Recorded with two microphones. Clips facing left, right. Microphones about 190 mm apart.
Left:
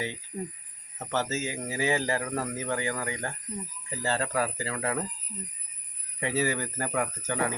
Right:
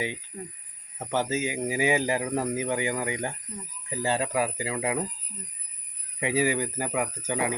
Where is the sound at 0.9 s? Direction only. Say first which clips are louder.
Right 3 dB; 15° right (ahead or behind).